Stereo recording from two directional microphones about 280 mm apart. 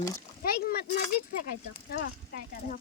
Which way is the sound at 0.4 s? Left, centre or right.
Left.